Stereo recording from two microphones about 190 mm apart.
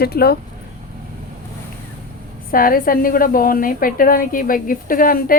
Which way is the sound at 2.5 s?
50° left (ahead or behind).